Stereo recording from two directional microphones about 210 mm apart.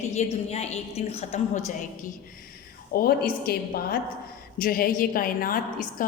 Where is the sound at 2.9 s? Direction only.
45° left (ahead or behind).